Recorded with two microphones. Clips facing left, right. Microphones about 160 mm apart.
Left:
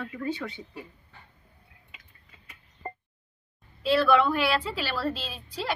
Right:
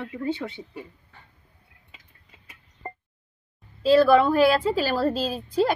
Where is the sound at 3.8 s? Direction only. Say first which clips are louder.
Right 5 dB; 40° right (ahead or behind).